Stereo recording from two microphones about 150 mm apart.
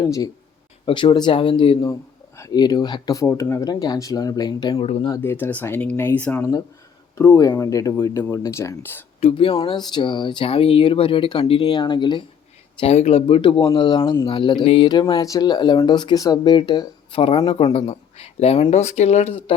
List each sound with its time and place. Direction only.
0.0 s speech: 25° left (ahead or behind)
1.8 s speech: 20° left (ahead or behind)
5.2 s speech: 15° left (ahead or behind)
9.2 s speech: 35° left (ahead or behind)
12.8 s speech: 45° left (ahead or behind)